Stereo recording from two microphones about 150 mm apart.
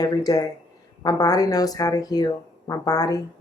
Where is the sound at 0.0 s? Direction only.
25° left (ahead or behind).